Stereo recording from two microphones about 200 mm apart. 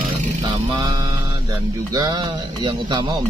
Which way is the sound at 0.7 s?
20° right (ahead or behind).